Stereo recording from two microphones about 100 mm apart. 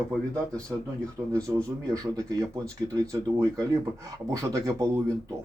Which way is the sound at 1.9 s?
35° right (ahead or behind).